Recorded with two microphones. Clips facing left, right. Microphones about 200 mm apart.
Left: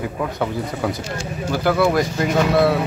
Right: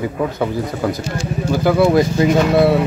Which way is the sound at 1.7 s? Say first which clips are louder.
Right 4 dB; 20° right (ahead or behind).